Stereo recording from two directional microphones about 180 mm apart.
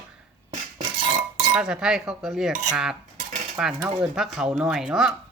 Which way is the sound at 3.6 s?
5° right (ahead or behind).